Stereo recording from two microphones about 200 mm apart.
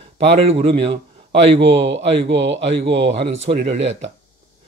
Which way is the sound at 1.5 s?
60° right (ahead or behind).